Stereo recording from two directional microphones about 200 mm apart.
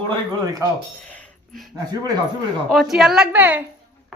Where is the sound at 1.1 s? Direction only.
Centre (ahead or behind).